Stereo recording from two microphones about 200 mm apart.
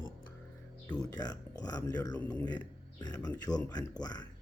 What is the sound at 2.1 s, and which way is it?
Speech, 5° left (ahead or behind).